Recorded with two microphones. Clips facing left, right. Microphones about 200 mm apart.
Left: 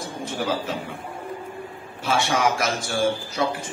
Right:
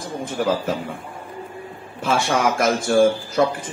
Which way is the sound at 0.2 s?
50° right (ahead or behind).